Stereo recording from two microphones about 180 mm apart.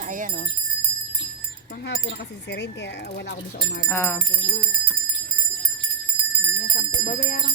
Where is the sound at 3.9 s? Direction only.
15° left (ahead or behind).